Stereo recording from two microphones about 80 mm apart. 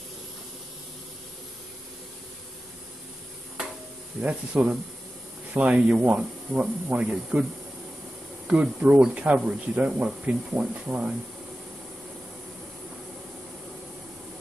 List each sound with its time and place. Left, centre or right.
4.2 s speech: centre
8.5 s speech: centre